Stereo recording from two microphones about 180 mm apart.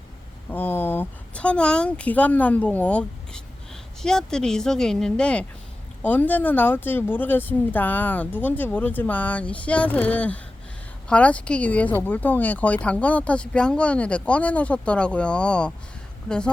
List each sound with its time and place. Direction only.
0.5 s a woman's voice: 10° left (ahead or behind)